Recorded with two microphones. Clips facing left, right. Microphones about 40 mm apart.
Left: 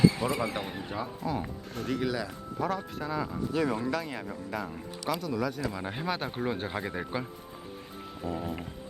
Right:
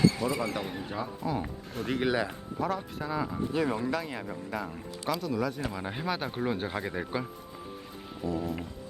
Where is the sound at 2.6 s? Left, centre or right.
Centre.